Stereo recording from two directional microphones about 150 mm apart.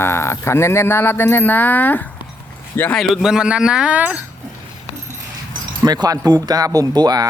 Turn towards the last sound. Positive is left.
turn(degrees=-25)  # may be behind; listen again after turning